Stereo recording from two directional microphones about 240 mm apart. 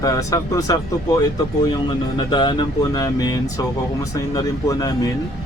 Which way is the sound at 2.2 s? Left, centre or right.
Centre.